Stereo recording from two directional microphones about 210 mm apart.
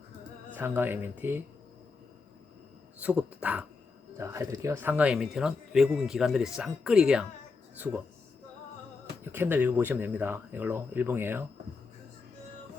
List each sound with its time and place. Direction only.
0.5 s speech: 10° right (ahead or behind)
3.0 s speech: 5° right (ahead or behind)
9.3 s speech: 10° right (ahead or behind)